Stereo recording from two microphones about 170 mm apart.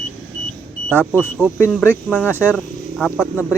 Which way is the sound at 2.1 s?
10° left (ahead or behind).